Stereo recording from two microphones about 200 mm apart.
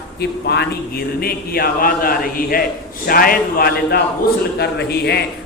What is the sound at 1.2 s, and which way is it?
A man's voice, 50° left (ahead or behind).